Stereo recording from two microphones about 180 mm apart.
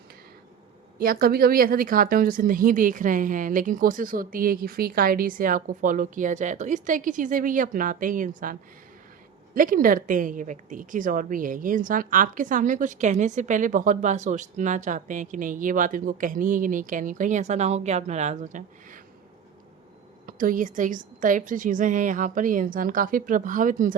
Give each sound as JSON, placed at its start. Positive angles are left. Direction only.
{"t": 0.9, "sound": "a woman's voice", "side_deg": -55}
{"t": 9.6, "sound": "a woman's voice", "side_deg": -50}
{"t": 20.2, "sound": "a woman's voice", "side_deg": -50}